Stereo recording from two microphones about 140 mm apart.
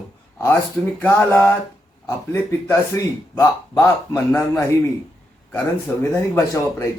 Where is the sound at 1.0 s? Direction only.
15° left (ahead or behind).